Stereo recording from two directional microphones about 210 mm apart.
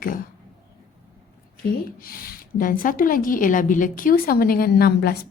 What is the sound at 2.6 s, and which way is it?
A woman's voice, 40° left (ahead or behind).